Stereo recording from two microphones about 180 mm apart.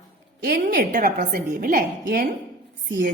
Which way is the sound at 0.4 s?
55° right (ahead or behind).